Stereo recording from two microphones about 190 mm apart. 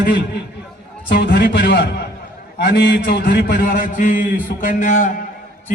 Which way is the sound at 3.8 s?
45° left (ahead or behind).